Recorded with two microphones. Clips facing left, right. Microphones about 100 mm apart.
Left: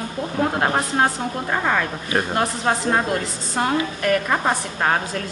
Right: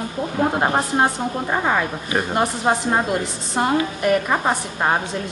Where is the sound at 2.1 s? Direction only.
5° right (ahead or behind).